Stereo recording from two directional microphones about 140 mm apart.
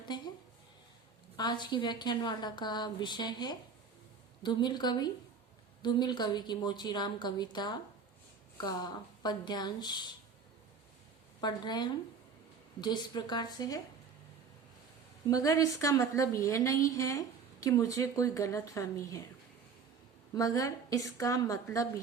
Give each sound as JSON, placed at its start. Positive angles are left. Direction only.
{"t": 0.1, "sound": "a woman's voice", "side_deg": 30}
{"t": 1.4, "sound": "a woman's voice", "side_deg": 30}
{"t": 11.3, "sound": "a woman's voice", "side_deg": 30}
{"t": 15.3, "sound": "a woman's voice", "side_deg": 25}
{"t": 20.3, "sound": "a woman's voice", "side_deg": 25}